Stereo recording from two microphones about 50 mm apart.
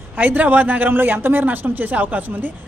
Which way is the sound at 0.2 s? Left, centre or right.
Right.